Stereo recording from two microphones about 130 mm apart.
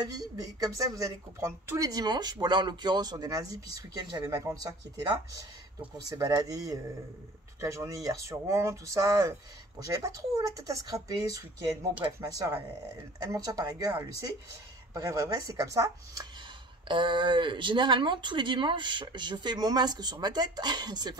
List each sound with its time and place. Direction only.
0.0 s speech: 30° right (ahead or behind)
6.0 s speech: 25° right (ahead or behind)
15.0 s speech: 25° right (ahead or behind)
16.8 s speech: 40° right (ahead or behind)